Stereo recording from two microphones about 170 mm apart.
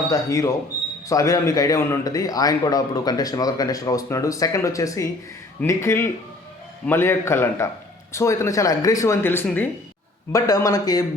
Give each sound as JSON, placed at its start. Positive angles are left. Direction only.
{"t": 0.1, "sound": "a man's voice", "side_deg": 20}